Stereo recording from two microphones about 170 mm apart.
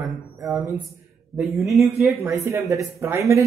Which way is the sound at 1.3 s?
Centre (ahead or behind).